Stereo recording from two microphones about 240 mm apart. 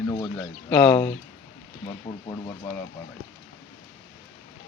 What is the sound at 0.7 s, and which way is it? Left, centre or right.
Speech, centre.